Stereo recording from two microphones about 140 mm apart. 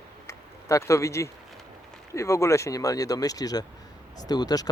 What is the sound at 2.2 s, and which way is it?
Speech, 20° left (ahead or behind).